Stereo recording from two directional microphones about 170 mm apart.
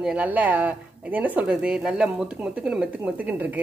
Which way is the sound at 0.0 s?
10° right (ahead or behind).